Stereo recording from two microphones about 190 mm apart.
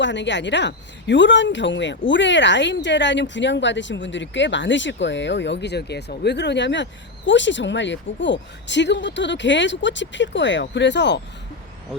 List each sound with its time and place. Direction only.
0.0 s speech: 70° left (ahead or behind)